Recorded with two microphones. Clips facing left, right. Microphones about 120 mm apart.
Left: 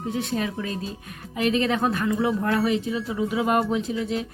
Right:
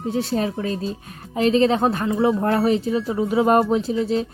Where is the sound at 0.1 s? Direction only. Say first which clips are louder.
Right 5 dB; 35° right (ahead or behind).